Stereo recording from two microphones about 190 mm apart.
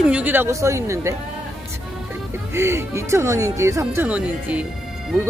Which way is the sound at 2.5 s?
15° right (ahead or behind).